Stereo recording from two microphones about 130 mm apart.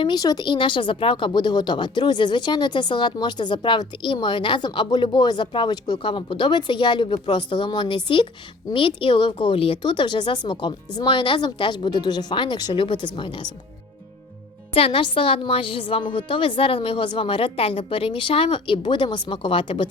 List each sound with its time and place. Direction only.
0.0 s a woman's voice: 30° left (ahead or behind)
14.7 s a woman's voice: 45° left (ahead or behind)